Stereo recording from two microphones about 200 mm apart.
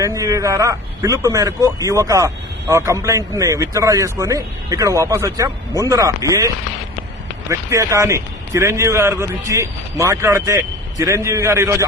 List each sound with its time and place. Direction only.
0.0 s speech: 15° right (ahead or behind)
7.7 s speech: 15° right (ahead or behind)